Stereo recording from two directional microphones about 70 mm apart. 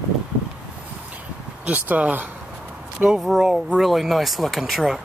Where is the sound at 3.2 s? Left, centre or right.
Centre.